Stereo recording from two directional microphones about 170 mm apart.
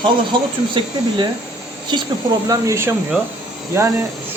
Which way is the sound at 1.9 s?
25° right (ahead or behind).